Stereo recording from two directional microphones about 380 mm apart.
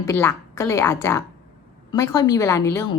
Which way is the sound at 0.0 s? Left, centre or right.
Centre.